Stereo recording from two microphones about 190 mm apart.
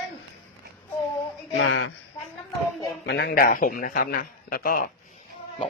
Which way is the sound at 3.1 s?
60° left (ahead or behind).